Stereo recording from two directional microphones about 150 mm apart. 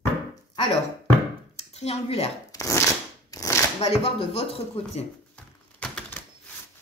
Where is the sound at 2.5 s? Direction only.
20° left (ahead or behind).